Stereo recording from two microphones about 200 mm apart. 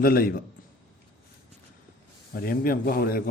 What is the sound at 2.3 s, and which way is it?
Speech, 45° left (ahead or behind).